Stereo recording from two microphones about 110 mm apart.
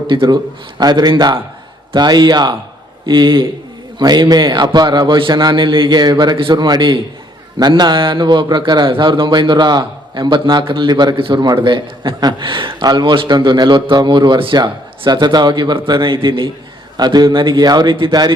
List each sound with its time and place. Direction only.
0.1 s a man's voice: 50° right (ahead or behind)